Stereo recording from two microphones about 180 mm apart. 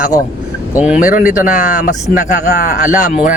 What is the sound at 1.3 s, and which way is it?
Speech, 45° left (ahead or behind).